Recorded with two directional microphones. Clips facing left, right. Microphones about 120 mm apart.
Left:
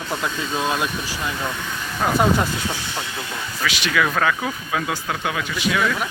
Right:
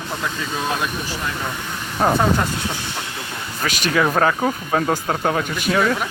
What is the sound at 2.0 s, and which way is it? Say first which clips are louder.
Speech: right 4 dB; 35° right (ahead or behind).